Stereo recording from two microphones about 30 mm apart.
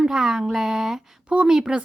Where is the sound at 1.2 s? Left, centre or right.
Right.